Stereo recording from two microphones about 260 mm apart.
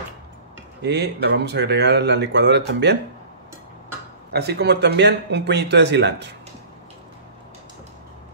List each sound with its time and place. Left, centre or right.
0.8 s speech: right
4.3 s speech: right